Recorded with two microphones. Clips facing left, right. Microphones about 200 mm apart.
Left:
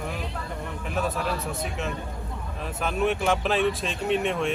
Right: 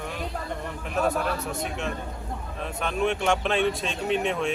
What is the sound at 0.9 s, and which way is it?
Speech, centre (ahead or behind).